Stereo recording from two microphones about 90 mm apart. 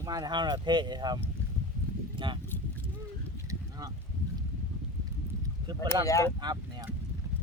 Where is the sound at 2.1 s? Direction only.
65° right (ahead or behind).